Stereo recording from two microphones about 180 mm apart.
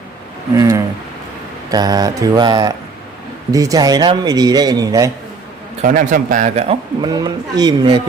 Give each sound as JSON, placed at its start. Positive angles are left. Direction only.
{"t": 0.5, "sound": "speech", "side_deg": -20}
{"t": 5.8, "sound": "speech", "side_deg": -45}